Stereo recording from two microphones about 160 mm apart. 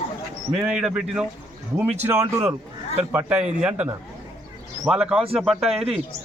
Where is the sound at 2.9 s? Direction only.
10° right (ahead or behind).